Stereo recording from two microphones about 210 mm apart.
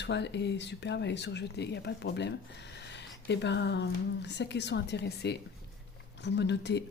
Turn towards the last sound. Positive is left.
turn(degrees=55)  # may be behind; listen again after turning